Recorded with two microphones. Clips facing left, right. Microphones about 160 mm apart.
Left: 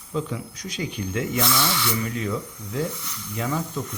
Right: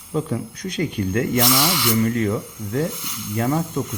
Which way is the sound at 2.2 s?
90° right.